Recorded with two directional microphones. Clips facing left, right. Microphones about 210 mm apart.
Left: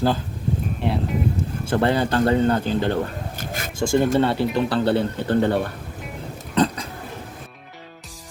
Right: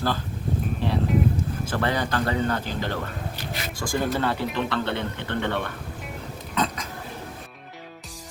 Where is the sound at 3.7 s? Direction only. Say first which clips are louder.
Left 8 dB; 25° left (ahead or behind).